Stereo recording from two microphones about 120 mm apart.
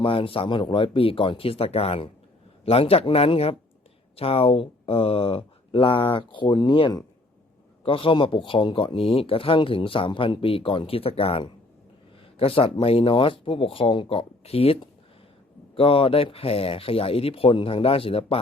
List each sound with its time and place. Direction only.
0.0 s speech: 50° left (ahead or behind)